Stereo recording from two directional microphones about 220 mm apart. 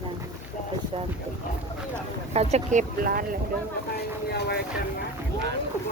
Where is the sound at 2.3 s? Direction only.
30° right (ahead or behind).